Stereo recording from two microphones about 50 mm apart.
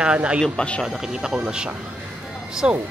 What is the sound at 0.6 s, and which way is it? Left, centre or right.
Speech, centre.